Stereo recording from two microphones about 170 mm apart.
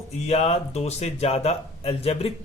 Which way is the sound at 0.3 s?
40° left (ahead or behind).